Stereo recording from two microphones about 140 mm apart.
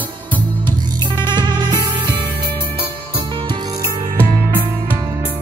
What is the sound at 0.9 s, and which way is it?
Music, 30° right (ahead or behind).